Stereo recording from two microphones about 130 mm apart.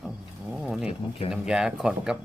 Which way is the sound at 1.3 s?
5° right (ahead or behind).